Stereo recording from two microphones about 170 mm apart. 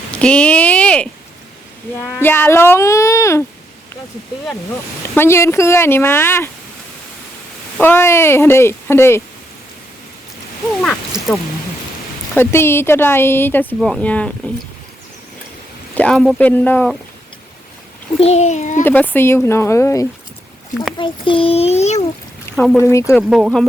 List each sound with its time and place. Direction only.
0.1 s a sound: 5° left (ahead or behind)
2.0 s speech: 10° left (ahead or behind)
5.1 s speech: 15° left (ahead or behind)
7.8 s speech: 10° left (ahead or behind)
12.3 s speech: 15° left (ahead or behind)
16.0 s speech: 5° left (ahead or behind)
18.2 s a child's voice: 40° left (ahead or behind)
18.9 s speech: 10° left (ahead or behind)
21.0 s a child's voice: 30° left (ahead or behind)
22.4 s speech: 5° left (ahead or behind)
22.9 s speech: 15° left (ahead or behind)
23.1 s speech: 5° right (ahead or behind)